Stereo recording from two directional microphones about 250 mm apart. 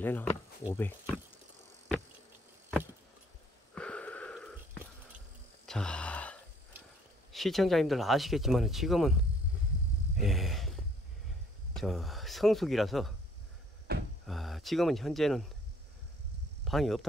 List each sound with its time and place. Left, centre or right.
0.0 s speech: centre
3.7 s a sound: centre
5.7 s gasp: centre
7.3 s speech: centre
10.2 s speech: centre
11.7 s speech: centre
14.2 s speech: centre
16.6 s speech: centre